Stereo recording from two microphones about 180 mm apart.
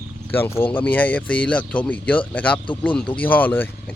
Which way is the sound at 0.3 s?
10° left (ahead or behind).